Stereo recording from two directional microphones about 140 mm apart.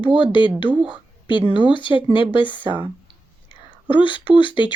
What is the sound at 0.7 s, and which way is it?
Speech, 5° right (ahead or behind).